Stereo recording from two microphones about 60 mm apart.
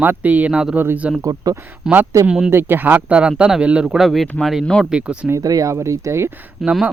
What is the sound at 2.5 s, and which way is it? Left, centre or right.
Speech, right.